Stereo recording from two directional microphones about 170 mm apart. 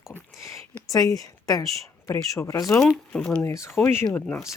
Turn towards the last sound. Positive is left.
turn(degrees=5)  # may be behind; listen again after turning